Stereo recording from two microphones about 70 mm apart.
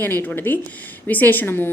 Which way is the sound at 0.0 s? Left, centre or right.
Left.